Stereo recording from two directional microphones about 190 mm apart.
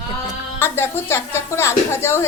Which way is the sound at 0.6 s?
10° left (ahead or behind).